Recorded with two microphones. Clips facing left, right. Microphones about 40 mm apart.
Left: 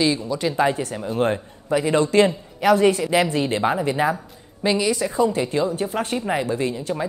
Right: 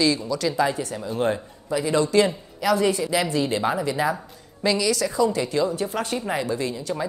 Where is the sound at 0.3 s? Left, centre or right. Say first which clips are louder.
Left 1 dB; left.